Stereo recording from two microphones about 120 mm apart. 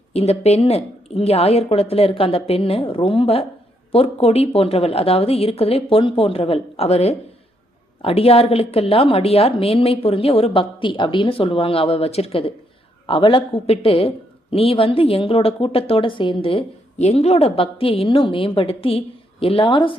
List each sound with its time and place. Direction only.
0.1 s a woman's voice: 60° left (ahead or behind); by 20.0 s 45° left (ahead or behind)